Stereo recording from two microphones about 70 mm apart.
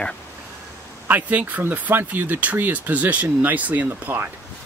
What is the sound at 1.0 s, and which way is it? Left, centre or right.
Speech, right.